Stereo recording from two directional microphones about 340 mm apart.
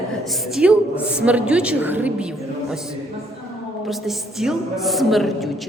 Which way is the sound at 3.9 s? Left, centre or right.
Centre.